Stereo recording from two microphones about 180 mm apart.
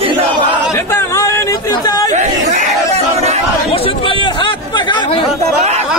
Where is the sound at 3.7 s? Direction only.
30° left (ahead or behind).